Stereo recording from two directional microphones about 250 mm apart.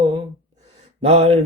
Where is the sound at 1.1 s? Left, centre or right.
Right.